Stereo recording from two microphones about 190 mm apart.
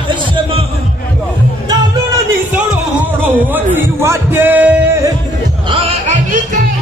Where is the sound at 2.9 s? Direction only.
10° right (ahead or behind).